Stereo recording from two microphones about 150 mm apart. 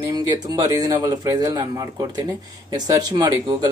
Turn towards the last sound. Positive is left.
turn(degrees=-25)  # may be behind; listen again after turning